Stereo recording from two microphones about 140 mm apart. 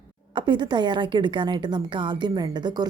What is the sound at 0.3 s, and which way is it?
Speech, 35° right (ahead or behind).